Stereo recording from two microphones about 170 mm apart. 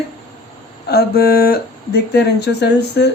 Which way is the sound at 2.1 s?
75° left (ahead or behind).